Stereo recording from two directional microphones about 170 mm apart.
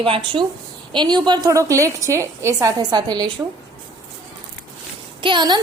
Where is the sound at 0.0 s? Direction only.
30° right (ahead or behind).